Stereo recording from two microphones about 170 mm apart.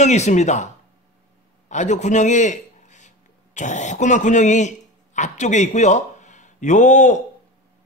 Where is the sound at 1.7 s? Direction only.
45° left (ahead or behind).